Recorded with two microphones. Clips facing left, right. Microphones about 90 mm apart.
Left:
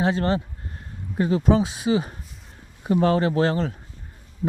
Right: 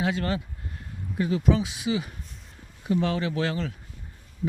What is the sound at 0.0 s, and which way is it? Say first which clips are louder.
Speech: left 5 dB; 35° left (ahead or behind).